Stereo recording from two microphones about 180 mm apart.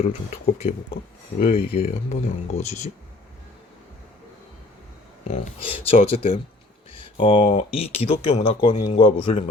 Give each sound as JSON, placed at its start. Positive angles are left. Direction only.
{"t": 0.0, "sound": "speech", "side_deg": 35}
{"t": 5.3, "sound": "speech", "side_deg": 35}